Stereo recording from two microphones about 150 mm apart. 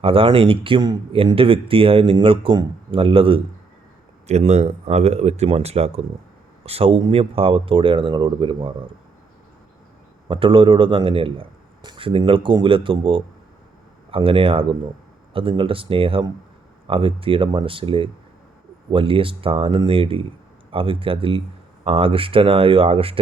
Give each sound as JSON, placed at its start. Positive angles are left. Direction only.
{"t": 0.0, "sound": "speech", "side_deg": -40}
{"t": 10.2, "sound": "speech", "side_deg": -35}